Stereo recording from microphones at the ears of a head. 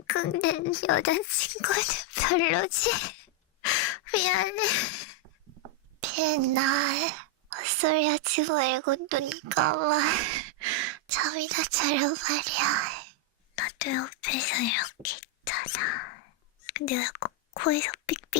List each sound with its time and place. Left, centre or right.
0.0 s speech: left
5.2 s a sound: right
13.6 s speech: left